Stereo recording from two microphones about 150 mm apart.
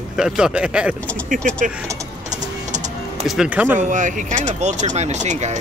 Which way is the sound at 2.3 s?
50° right (ahead or behind).